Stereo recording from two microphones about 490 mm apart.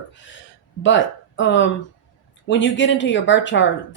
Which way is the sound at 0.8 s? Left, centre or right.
Left.